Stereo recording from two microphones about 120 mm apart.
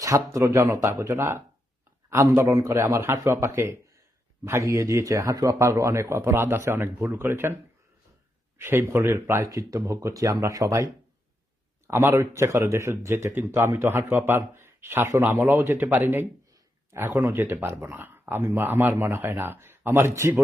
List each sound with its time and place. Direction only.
0.0 s speech: 25° right (ahead or behind)